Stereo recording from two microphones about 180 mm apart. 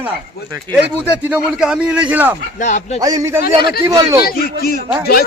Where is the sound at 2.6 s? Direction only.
45° left (ahead or behind).